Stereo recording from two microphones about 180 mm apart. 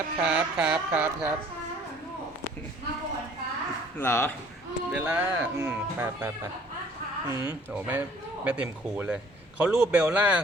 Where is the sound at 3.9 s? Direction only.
10° left (ahead or behind).